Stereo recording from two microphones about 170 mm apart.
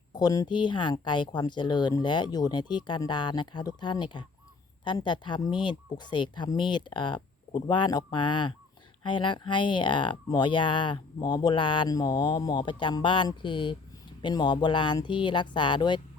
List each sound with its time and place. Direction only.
0.1 s speech: 25° left (ahead or behind)